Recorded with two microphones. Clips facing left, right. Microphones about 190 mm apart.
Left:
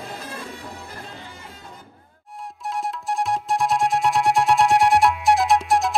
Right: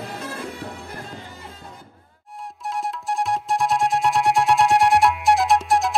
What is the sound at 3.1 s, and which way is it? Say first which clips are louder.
Music: even; centre (ahead or behind).